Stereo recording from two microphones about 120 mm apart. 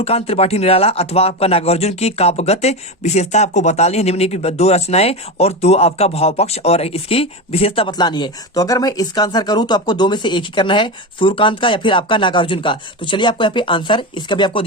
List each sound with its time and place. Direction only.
0.0 s speech: 55° left (ahead or behind)
7.9 s speech: 35° left (ahead or behind)